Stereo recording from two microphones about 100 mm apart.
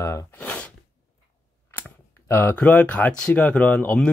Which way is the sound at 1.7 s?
20° left (ahead or behind).